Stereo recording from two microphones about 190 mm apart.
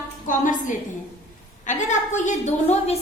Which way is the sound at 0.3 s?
45° left (ahead or behind).